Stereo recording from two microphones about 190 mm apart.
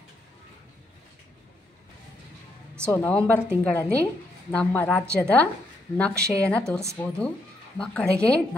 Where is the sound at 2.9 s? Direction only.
10° left (ahead or behind).